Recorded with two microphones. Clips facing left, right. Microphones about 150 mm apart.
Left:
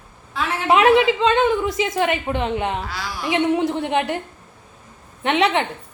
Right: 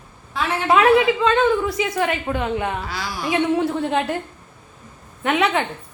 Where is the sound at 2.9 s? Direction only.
Centre (ahead or behind).